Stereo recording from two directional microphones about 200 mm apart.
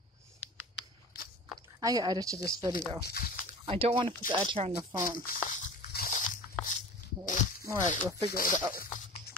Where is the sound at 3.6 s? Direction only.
25° right (ahead or behind).